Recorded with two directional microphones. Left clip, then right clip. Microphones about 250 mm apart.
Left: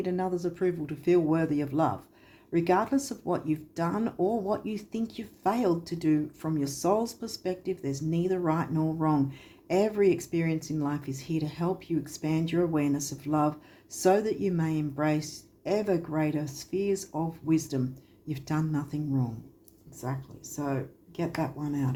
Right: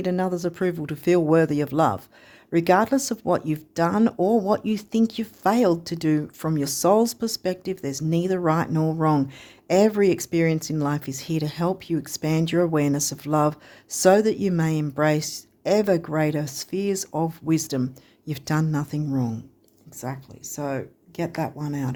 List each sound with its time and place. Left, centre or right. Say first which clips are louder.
0.0 s speech: right 5 dB; right